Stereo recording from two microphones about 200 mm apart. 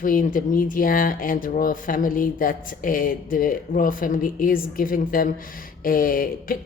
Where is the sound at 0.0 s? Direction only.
45° left (ahead or behind).